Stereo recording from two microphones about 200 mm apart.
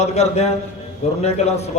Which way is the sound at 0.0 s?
35° left (ahead or behind).